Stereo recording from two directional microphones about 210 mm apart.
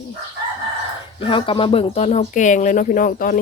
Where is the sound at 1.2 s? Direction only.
25° left (ahead or behind).